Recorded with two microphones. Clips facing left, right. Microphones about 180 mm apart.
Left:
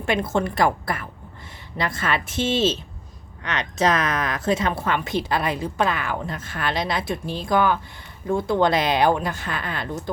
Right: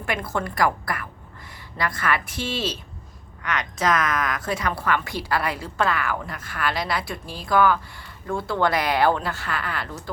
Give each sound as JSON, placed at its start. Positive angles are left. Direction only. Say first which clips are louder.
{"t": 0.0, "sound": "speech", "louder": "left 5 dB", "side_deg": 25}